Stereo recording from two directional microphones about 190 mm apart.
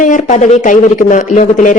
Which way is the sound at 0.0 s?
45° left (ahead or behind).